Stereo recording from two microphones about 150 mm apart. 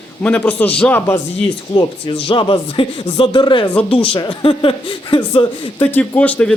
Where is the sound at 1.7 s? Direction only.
35° left (ahead or behind).